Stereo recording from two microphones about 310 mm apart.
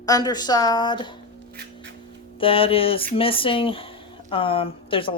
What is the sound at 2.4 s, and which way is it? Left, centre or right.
Speech, centre.